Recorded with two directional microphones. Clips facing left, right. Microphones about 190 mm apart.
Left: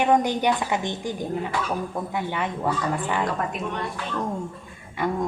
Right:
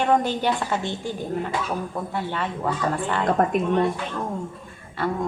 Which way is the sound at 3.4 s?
50° right (ahead or behind).